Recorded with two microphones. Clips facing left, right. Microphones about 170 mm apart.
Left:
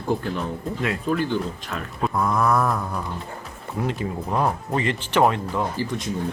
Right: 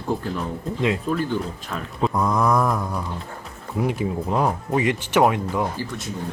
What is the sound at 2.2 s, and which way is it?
Speech, 15° right (ahead or behind).